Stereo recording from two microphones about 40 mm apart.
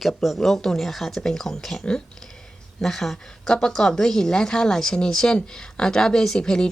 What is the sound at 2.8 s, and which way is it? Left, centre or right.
Speech, centre.